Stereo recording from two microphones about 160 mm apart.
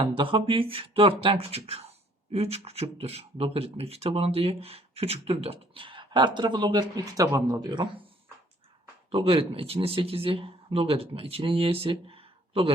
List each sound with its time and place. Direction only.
0.0 s speech: 30° right (ahead or behind)